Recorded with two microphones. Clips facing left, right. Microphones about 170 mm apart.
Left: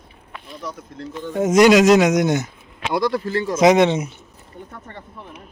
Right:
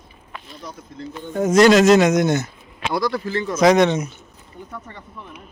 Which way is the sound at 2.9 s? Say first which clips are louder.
Left 2 dB; 25° left (ahead or behind).